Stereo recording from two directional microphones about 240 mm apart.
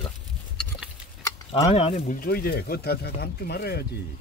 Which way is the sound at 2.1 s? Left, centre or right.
Left.